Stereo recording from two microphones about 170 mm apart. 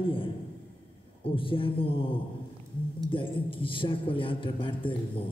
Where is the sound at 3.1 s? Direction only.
30° left (ahead or behind).